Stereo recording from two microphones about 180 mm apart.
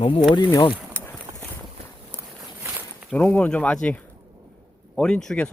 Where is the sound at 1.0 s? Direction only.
10° left (ahead or behind).